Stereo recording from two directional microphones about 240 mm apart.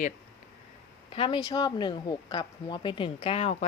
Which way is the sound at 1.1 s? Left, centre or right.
Left.